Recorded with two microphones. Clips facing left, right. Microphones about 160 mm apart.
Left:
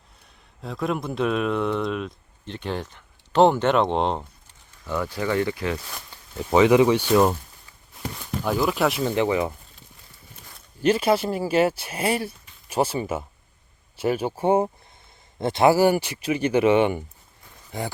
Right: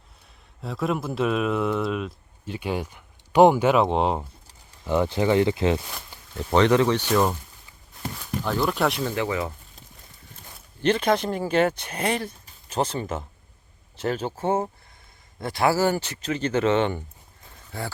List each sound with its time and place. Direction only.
0.6 s a man's voice: centre (ahead or behind)
4.8 s speech: 25° right (ahead or behind)
6.3 s speech: 5° left (ahead or behind)
9.0 s speech: 20° left (ahead or behind)
10.8 s speech: 5° left (ahead or behind)